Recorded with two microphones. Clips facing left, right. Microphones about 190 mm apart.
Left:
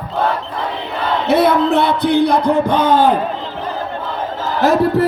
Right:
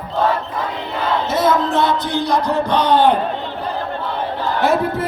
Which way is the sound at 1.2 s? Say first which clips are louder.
Left 6 dB; 65° left (ahead or behind).